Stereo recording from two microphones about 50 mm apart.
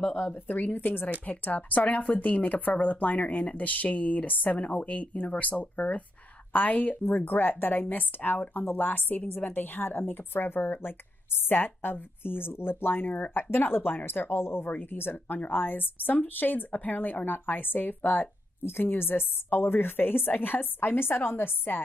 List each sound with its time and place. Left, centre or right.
0.1 s a woman's voice: left
18.6 s a woman's voice: left